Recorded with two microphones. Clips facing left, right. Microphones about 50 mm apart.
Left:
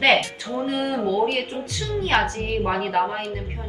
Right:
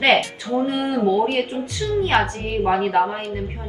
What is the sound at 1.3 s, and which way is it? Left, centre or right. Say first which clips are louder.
Speech: right 3 dB; right.